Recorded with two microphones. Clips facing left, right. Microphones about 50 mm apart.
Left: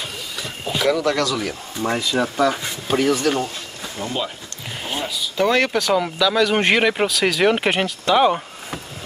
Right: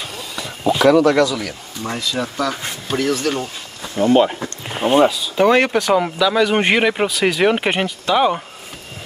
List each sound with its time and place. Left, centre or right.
0.8 s speech: right
1.4 s speech: centre
3.9 s speech: right
4.6 s a sound: right
5.4 s speech: centre